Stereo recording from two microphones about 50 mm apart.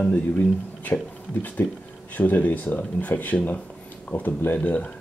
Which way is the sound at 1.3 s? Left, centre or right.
Left.